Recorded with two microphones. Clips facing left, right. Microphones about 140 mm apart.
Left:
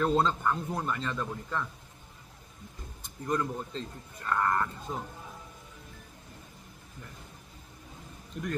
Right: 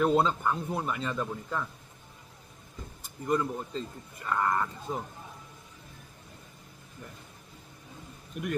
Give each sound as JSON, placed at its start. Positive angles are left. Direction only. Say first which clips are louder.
{"t": 0.0, "sound": "a man's voice", "louder": "right 2 dB", "side_deg": -10}
{"t": 3.0, "sound": "a man's voice", "louder": "right 2 dB", "side_deg": -5}
{"t": 8.3, "sound": "a man's voice", "louder": "right 1 dB", "side_deg": -10}